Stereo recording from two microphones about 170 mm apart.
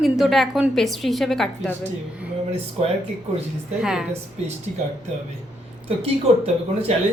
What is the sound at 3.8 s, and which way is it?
Speech, centre (ahead or behind).